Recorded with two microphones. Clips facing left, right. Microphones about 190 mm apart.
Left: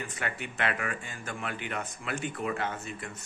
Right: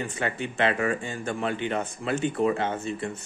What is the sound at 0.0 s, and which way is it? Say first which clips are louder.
Speech: right 7 dB; 30° right (ahead or behind).